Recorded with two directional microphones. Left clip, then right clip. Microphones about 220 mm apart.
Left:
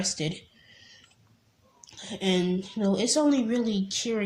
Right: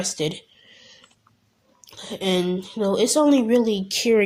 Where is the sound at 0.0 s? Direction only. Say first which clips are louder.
Right 5 dB; 35° right (ahead or behind).